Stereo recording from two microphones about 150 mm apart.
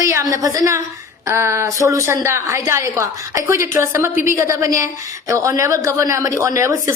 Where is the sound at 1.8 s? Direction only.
20° right (ahead or behind).